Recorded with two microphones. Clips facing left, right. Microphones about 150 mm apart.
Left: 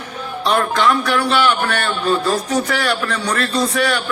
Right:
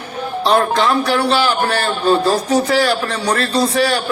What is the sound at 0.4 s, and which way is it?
A man's voice, 35° right (ahead or behind).